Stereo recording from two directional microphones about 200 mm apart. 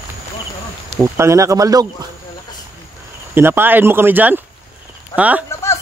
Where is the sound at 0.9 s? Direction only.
15° right (ahead or behind).